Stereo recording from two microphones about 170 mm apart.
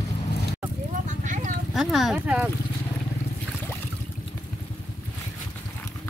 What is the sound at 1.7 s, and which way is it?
Speech, centre (ahead or behind).